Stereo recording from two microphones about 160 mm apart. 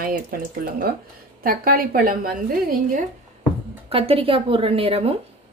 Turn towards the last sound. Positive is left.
turn(degrees=-35)  # may be behind; listen again after turning